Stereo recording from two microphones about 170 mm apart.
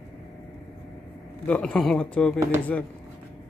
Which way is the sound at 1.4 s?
5° left (ahead or behind).